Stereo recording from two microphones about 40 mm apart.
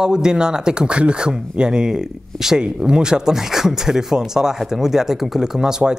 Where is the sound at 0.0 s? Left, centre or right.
Centre.